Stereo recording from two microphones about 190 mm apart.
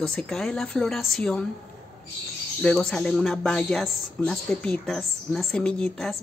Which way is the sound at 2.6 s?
5° left (ahead or behind).